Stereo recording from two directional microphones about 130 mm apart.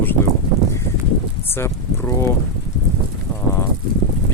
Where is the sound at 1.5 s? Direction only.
20° left (ahead or behind).